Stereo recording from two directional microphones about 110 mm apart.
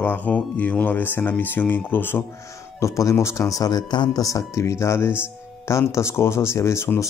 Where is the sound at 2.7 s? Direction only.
30° left (ahead or behind).